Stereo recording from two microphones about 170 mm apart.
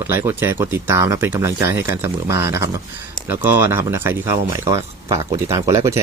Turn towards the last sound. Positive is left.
turn(degrees=-20)  # may be behind; listen again after turning